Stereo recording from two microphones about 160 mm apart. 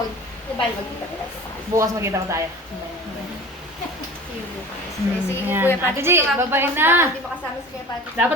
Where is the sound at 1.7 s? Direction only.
20° right (ahead or behind).